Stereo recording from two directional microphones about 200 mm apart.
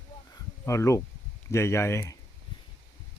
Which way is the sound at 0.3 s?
15° left (ahead or behind).